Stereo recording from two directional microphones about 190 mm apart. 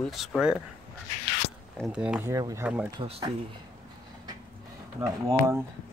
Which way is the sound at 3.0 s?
30° right (ahead or behind).